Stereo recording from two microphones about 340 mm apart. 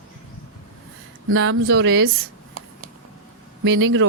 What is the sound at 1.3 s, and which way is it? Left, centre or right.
Speech, right.